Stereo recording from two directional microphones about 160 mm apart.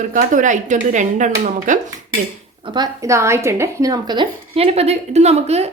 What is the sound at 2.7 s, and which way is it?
Speech, 20° right (ahead or behind).